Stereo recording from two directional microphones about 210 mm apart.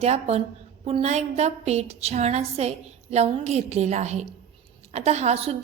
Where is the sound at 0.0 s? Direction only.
30° right (ahead or behind).